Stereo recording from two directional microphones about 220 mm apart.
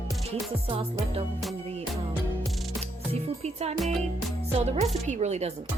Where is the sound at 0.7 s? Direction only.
25° right (ahead or behind).